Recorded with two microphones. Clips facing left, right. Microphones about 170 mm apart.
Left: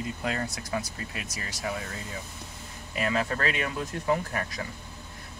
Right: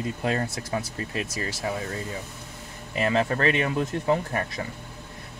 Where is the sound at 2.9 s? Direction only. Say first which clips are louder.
Right 4 dB; 25° right (ahead or behind).